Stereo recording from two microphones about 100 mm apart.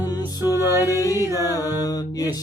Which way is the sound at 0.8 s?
35° left (ahead or behind).